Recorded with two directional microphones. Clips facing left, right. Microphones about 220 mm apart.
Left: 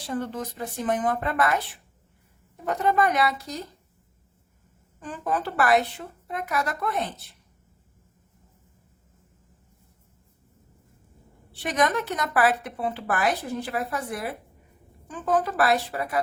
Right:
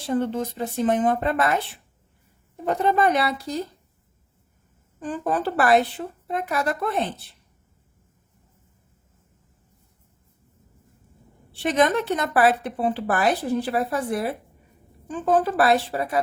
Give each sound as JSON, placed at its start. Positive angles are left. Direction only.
{"t": 0.0, "sound": "speech", "side_deg": -25}
{"t": 4.9, "sound": "speech", "side_deg": -35}
{"t": 11.5, "sound": "speech", "side_deg": -25}